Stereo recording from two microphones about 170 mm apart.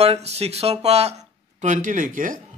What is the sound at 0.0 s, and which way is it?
Speech, 35° right (ahead or behind).